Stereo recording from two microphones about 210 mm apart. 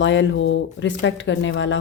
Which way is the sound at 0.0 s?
60° left (ahead or behind).